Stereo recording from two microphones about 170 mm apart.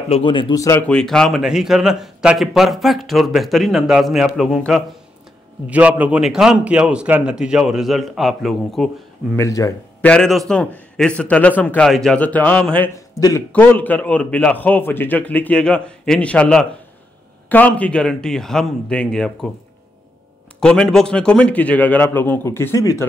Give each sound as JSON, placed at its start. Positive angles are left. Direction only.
{"t": 0.1, "sound": "speech", "side_deg": 30}
{"t": 0.8, "sound": "a man's voice", "side_deg": 5}
{"t": 9.4, "sound": "speech", "side_deg": 20}
{"t": 10.0, "sound": "a man's voice", "side_deg": 5}
{"t": 20.6, "sound": "a man's voice", "side_deg": 5}